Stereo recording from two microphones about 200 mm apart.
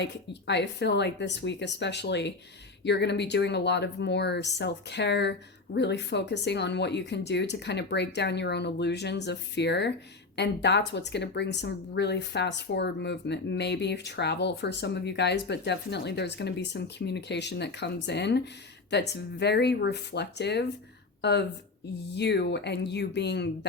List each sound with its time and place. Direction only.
0.0 s speech: 60° left (ahead or behind)